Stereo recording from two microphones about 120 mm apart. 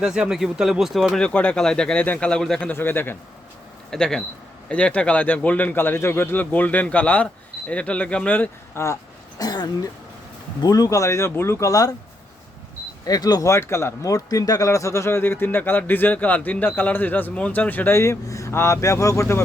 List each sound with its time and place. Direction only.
0.0 s speech: 5° right (ahead or behind); by 3.2 s 15° left (ahead or behind)
3.9 s speech: 5° left (ahead or behind)
9.4 s speech: 30° left (ahead or behind)
13.1 s speech: 35° left (ahead or behind)